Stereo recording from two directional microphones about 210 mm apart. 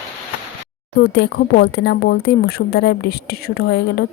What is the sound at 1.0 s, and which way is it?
A woman's voice, 50° left (ahead or behind).